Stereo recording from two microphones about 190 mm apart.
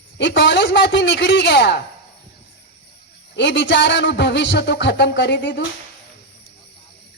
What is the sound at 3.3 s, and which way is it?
A woman's voice, 70° left (ahead or behind).